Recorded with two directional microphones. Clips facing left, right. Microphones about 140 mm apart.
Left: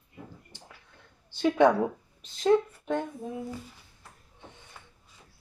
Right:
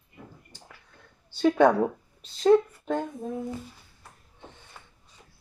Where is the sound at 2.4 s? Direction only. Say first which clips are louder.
Right 4 dB; 20° right (ahead or behind).